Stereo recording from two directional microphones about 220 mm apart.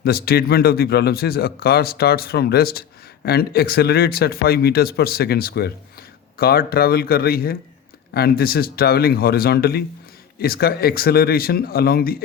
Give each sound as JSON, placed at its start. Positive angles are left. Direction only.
{"t": 0.0, "sound": "a man's voice", "side_deg": 45}